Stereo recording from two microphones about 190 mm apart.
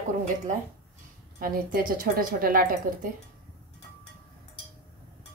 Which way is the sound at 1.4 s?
45° right (ahead or behind).